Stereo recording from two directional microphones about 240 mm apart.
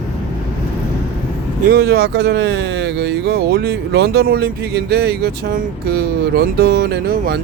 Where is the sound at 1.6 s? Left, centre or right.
Right.